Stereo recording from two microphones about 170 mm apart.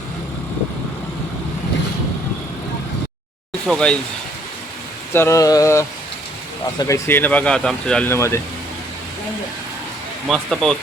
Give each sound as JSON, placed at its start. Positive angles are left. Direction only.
{"t": 3.7, "sound": "speech", "side_deg": 5}
{"t": 5.1, "sound": "speech", "side_deg": 15}
{"t": 10.2, "sound": "speech", "side_deg": 0}